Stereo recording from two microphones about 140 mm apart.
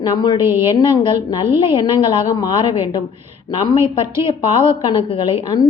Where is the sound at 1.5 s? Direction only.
35° left (ahead or behind).